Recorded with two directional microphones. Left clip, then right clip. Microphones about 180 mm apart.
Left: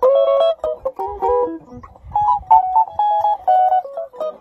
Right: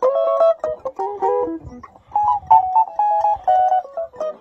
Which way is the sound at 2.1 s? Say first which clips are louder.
Left 1 dB; 20° right (ahead or behind).